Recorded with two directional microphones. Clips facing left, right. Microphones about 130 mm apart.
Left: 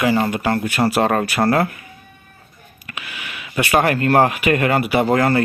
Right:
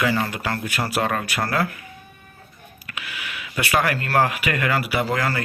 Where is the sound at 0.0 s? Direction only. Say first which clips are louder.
Left 5 dB; 20° left (ahead or behind).